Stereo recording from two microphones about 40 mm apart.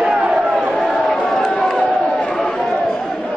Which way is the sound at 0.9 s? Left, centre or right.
Centre.